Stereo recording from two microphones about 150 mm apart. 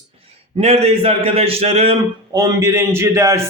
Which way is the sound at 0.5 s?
45° right (ahead or behind).